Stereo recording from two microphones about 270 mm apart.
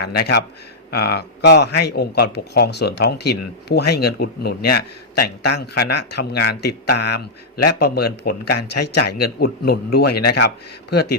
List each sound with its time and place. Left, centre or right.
0.0 s speech: left
8.5 s speech: left
9.0 s speech: left
10.1 s speech: left
10.3 s speech: left